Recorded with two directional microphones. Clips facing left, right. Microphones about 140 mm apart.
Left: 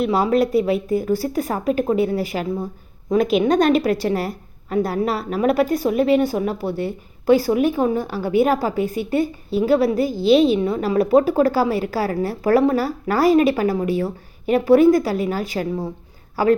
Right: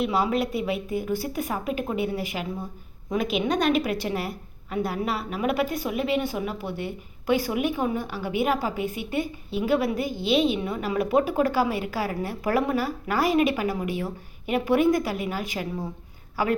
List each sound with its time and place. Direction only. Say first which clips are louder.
0.0 s a woman's voice: left 6 dB; 40° left (ahead or behind)